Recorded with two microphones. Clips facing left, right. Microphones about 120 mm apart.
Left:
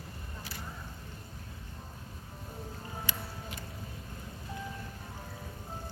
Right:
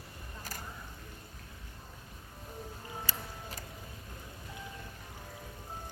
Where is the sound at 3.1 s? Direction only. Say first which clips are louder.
Left 2 dB; 35° right (ahead or behind).